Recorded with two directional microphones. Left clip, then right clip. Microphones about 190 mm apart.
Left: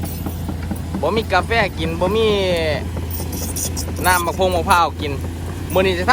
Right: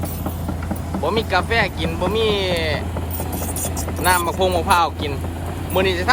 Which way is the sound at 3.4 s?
20° right (ahead or behind).